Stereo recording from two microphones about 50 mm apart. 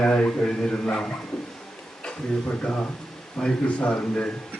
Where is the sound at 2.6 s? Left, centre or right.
Left.